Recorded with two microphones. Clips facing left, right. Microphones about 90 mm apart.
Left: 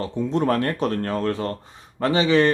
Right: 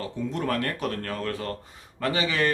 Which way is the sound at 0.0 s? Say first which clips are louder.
Left 7 dB; 30° left (ahead or behind).